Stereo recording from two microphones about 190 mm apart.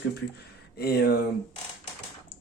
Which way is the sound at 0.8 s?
55° left (ahead or behind).